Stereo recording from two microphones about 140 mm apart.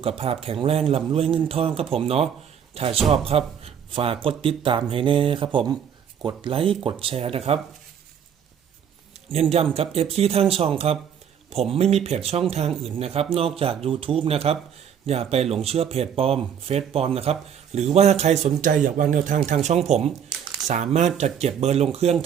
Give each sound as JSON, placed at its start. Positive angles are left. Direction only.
{"t": 0.2, "sound": "a man's voice", "side_deg": -45}
{"t": 9.3, "sound": "a man's voice", "side_deg": -45}